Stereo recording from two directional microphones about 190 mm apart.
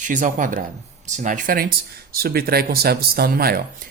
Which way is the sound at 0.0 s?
40° right (ahead or behind).